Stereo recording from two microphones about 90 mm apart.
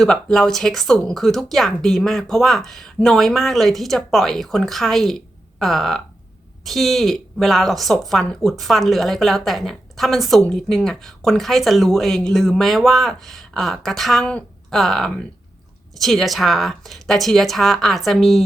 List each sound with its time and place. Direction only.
0.0 s speech: 5° left (ahead or behind)